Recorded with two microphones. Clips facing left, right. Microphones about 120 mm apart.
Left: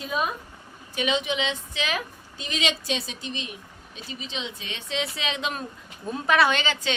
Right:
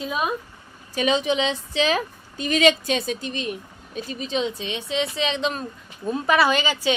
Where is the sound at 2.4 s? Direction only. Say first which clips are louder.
Right 10 dB; 50° right (ahead or behind).